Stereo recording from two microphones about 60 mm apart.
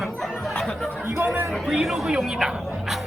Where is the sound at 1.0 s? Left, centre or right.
Right.